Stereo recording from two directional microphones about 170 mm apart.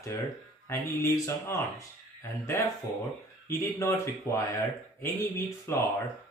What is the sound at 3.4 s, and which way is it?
Speech, 15° left (ahead or behind).